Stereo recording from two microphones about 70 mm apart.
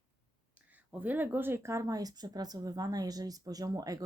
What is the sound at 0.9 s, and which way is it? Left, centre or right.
Speech, right.